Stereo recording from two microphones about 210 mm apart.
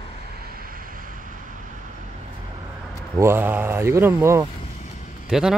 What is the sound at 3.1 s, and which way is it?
A man's voice, 10° right (ahead or behind).